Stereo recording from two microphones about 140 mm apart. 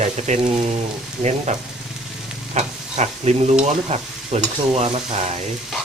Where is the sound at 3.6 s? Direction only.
55° right (ahead or behind).